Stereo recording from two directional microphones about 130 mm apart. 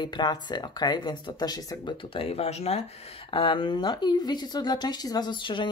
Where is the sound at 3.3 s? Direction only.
40° left (ahead or behind).